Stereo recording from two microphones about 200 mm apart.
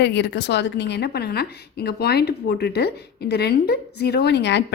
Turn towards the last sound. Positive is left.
turn(degrees=60)  # may be behind; listen again after turning